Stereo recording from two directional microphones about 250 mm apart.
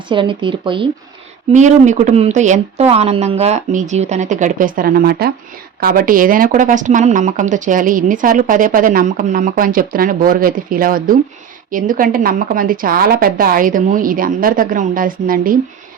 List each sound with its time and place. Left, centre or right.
0.1 s speech: centre